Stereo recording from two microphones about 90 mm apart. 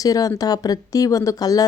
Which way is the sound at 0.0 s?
40° left (ahead or behind).